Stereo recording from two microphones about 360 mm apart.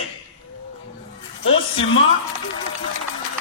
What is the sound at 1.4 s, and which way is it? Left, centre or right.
Music, left.